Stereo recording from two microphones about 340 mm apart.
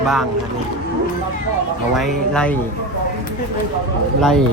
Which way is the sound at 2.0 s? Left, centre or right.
Centre.